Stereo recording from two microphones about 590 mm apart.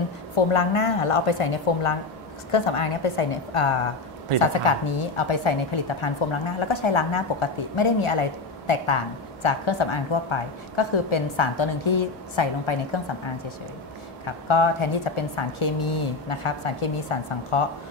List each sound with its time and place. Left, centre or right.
0.5 s a woman's voice: left
14.2 s a woman's voice: left